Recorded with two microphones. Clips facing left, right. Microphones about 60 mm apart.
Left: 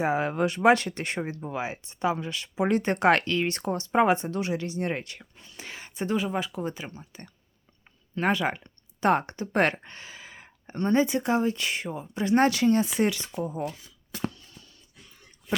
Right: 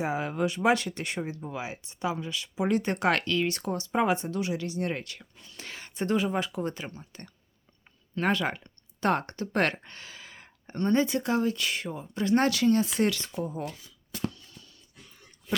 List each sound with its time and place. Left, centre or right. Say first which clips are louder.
0.0 s speech: left 3 dB; left
5.5 s speech: even; centre
14.1 s a sound: left 1 dB; left